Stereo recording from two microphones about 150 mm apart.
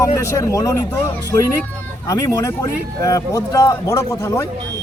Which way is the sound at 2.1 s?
20° left (ahead or behind).